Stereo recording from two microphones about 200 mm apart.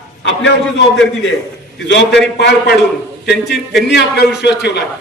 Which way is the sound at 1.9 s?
60° left (ahead or behind).